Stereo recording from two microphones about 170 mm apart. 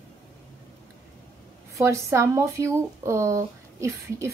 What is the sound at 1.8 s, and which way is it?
Speech, 15° right (ahead or behind).